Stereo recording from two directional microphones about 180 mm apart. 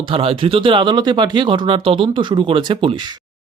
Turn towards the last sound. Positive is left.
turn(degrees=-30)  # may be behind; listen again after turning